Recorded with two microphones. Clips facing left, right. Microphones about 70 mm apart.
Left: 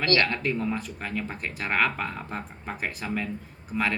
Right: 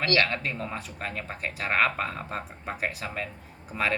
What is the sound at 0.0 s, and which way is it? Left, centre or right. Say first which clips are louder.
Speech: left 1 dB; centre.